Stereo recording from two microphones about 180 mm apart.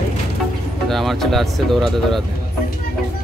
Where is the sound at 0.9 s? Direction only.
Centre (ahead or behind).